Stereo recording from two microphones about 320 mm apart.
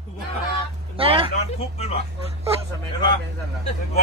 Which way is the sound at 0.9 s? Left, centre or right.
Centre.